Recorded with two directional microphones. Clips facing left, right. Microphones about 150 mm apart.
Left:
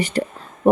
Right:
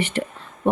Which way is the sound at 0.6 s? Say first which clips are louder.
Left 6 dB; 45° left (ahead or behind).